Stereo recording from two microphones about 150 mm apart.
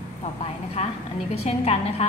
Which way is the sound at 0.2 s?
45° left (ahead or behind).